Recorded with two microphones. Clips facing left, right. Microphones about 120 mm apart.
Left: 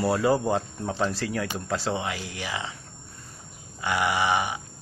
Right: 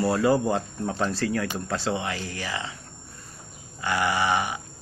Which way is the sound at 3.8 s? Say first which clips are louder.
Even; 15° left (ahead or behind).